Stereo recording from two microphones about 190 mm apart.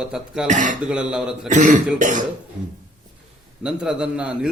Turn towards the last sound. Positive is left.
turn(degrees=-5)  # may be behind; listen again after turning